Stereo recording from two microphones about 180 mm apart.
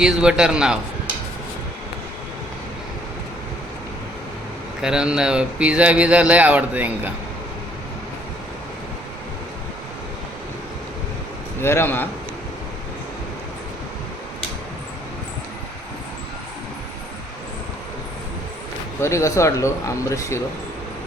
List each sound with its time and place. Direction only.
0.0 s a man's voice: 5° right (ahead or behind)
4.8 s speech: 5° right (ahead or behind)
11.6 s speech: 15° left (ahead or behind)
19.0 s speech: 15° left (ahead or behind)